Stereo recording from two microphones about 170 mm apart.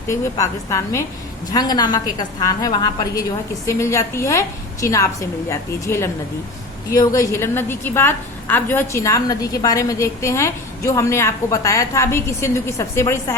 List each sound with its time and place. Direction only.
0.1 s a woman's voice: 15° left (ahead or behind)